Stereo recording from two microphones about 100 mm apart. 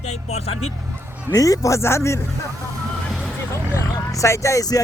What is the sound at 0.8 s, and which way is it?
Music, 20° right (ahead or behind).